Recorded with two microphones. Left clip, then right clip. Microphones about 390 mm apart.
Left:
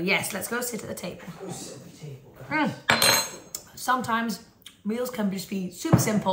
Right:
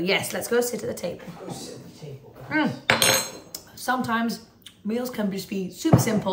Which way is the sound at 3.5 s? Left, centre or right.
Centre.